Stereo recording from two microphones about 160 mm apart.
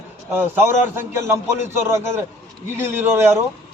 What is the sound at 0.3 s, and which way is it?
A man's voice, 15° right (ahead or behind).